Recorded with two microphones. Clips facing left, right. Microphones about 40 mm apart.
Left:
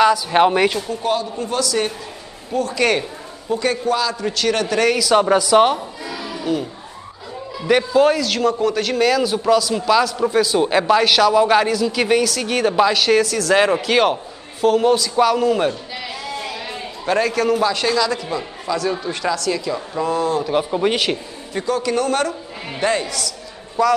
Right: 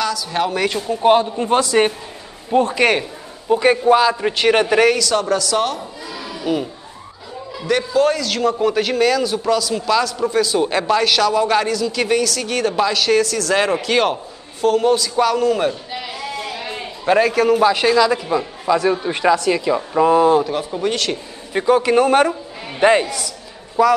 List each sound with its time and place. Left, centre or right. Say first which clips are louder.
0.0 s speech: left 6 dB; left
1.0 s a man's voice: right 9 dB; right
2.8 s a man's voice: right 2 dB; centre
5.1 s speech: left 5 dB; centre
6.5 s a man's voice: right 1 dB; centre
7.6 s a man's voice: left 2 dB; centre
17.0 s a man's voice: right 3 dB; centre
20.5 s a man's voice: left 3 dB; centre
21.5 s a man's voice: right 6 dB; right
23.8 s a man's voice: right 2 dB; centre